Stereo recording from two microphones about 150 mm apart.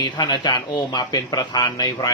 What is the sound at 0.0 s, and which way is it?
Speech, 30° left (ahead or behind).